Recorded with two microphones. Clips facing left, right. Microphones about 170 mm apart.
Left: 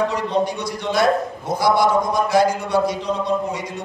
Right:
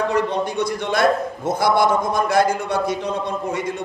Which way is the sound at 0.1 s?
55° right (ahead or behind).